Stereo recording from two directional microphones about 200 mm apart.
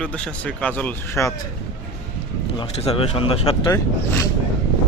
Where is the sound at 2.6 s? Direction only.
30° left (ahead or behind).